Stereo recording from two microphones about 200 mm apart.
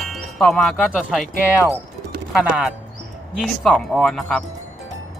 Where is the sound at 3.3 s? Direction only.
Centre (ahead or behind).